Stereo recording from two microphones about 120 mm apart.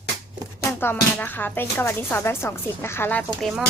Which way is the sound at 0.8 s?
15° left (ahead or behind).